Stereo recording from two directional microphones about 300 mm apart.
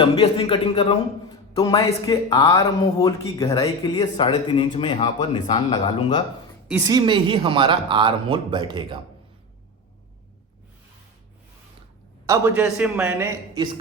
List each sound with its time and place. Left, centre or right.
0.0 s speech: centre
6.7 s speech: centre
12.2 s speech: centre